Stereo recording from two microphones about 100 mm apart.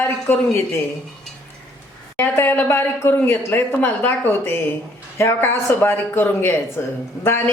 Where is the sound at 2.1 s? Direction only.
20° left (ahead or behind).